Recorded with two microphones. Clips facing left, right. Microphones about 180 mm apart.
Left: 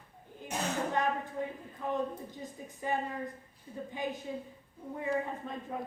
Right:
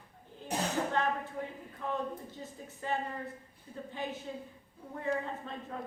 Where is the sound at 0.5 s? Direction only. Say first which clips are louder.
Right 2 dB; 35° right (ahead or behind).